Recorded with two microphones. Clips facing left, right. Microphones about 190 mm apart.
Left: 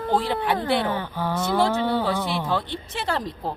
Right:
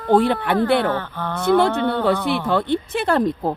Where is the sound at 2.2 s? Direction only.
60° right (ahead or behind).